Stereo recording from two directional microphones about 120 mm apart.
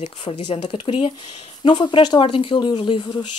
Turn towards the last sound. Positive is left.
turn(degrees=40)  # may be behind; listen again after turning